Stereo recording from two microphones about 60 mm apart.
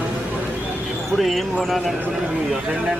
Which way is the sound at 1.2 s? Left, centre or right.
Centre.